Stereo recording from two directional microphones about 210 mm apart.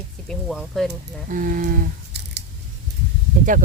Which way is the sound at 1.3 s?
40° right (ahead or behind).